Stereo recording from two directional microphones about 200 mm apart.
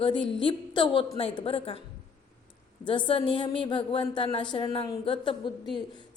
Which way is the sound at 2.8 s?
25° left (ahead or behind).